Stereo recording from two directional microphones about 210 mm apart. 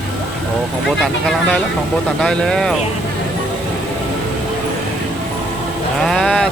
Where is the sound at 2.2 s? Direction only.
5° left (ahead or behind).